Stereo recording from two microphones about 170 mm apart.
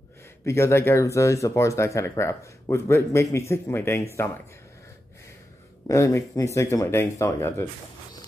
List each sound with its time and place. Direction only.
0.5 s speech: 15° left (ahead or behind)
5.9 s speech: 20° left (ahead or behind)